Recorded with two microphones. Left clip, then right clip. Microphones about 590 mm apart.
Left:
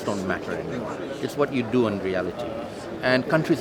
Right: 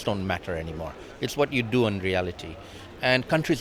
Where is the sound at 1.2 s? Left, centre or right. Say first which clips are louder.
Even; right.